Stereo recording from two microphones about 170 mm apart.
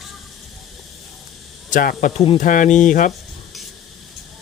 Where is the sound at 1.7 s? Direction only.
50° left (ahead or behind).